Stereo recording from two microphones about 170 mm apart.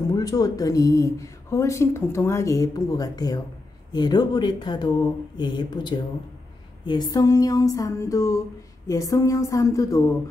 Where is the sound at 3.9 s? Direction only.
25° left (ahead or behind).